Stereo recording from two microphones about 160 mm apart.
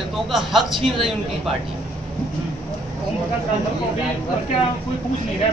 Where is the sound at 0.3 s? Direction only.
Centre (ahead or behind).